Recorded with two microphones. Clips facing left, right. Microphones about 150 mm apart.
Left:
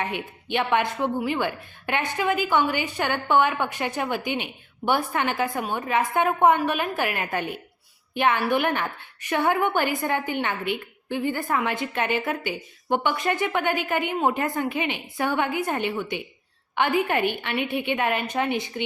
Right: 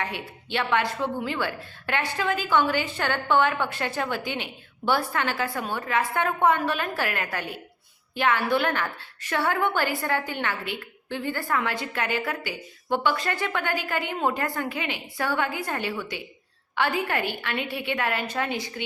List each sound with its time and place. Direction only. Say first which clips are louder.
0.0 s a woman's voice: left 3 dB; 20° left (ahead or behind)